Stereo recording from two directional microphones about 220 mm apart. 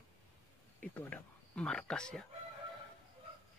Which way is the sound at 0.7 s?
5° left (ahead or behind).